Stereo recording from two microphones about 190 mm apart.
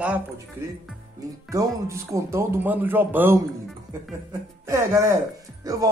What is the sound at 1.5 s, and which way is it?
Speech, 15° right (ahead or behind).